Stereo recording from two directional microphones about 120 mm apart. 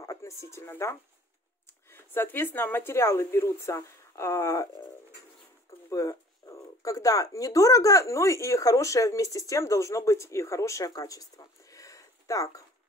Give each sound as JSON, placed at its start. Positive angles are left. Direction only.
{"t": 0.0, "sound": "speech", "side_deg": 25}
{"t": 5.9, "sound": "speech", "side_deg": 30}